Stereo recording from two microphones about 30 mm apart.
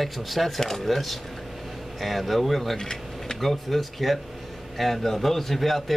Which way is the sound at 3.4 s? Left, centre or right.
Centre.